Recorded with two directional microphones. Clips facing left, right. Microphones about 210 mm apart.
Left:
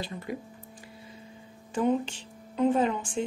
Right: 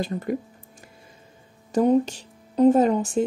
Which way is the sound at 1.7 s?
40° right (ahead or behind).